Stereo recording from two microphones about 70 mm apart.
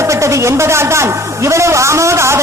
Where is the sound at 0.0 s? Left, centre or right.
Right.